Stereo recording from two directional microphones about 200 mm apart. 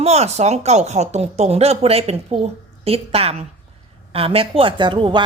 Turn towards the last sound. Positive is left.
turn(degrees=-25)  # may be behind; listen again after turning